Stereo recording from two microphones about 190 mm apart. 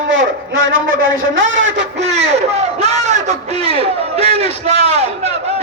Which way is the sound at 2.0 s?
35° right (ahead or behind).